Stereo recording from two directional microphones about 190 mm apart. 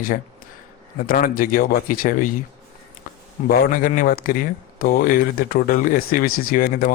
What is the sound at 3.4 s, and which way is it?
Speech, 45° left (ahead or behind).